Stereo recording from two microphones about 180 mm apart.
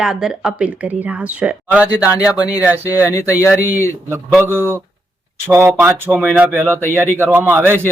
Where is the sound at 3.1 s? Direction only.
15° left (ahead or behind).